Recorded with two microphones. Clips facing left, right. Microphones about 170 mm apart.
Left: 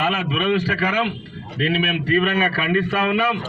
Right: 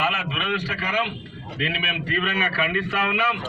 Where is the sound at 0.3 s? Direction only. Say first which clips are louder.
Left 8 dB; 45° left (ahead or behind).